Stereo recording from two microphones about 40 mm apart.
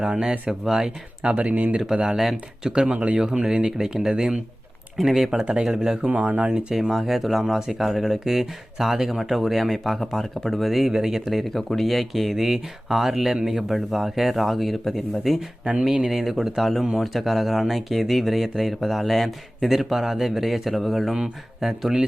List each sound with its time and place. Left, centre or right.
0.0 s speech: centre
1.4 s speech: right
1.9 s speech: centre
2.9 s speech: right
3.4 s speech: centre
6.1 s speech: right
6.9 s speech: centre
11.5 s speech: centre
15.8 s speech: centre